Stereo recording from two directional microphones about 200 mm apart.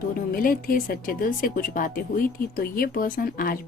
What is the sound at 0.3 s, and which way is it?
A woman's voice, 45° left (ahead or behind).